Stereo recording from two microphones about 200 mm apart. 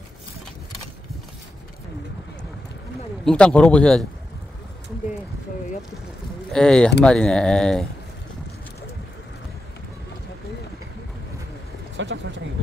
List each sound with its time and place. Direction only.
3.3 s speech: 5° left (ahead or behind)
6.5 s speech: 5° left (ahead or behind)
12.0 s speech: 65° right (ahead or behind)